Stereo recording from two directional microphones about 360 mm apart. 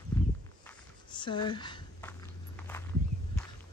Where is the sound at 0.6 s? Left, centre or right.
Centre.